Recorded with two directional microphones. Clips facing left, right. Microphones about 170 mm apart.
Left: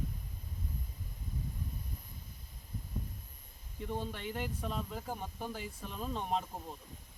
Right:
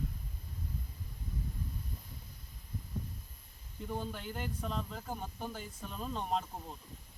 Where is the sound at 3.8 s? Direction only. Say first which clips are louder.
Left 1 dB; centre (ahead or behind).